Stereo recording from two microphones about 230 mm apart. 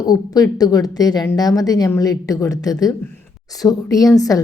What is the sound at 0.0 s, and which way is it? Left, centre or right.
Speech, centre.